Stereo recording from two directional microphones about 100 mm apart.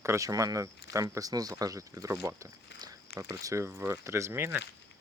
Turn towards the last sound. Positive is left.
turn(degrees=-25)  # may be behind; listen again after turning